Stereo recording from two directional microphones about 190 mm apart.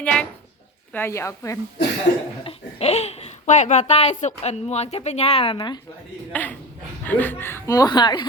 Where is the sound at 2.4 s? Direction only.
35° left (ahead or behind).